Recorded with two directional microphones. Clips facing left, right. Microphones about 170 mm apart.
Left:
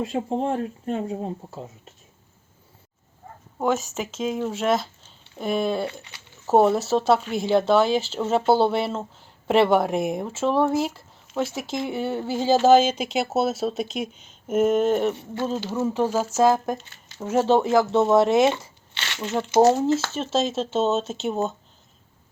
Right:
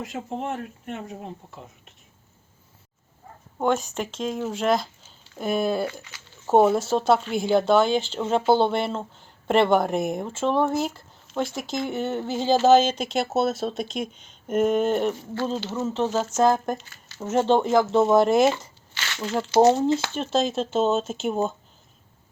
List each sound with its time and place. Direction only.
0.0 s speech: 30° left (ahead or behind)
3.6 s speech: centre (ahead or behind)
5.9 s speech: 30° left (ahead or behind)
6.5 s speech: centre (ahead or behind)
15.1 s speech: 25° left (ahead or behind)
15.4 s speech: 10° left (ahead or behind)
18.9 s tearing: 20° left (ahead or behind)
20.1 s speech: centre (ahead or behind)